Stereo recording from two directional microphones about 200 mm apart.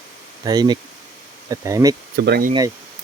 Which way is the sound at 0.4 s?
20° right (ahead or behind).